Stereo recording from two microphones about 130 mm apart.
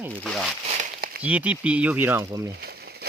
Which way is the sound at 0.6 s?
65° right (ahead or behind).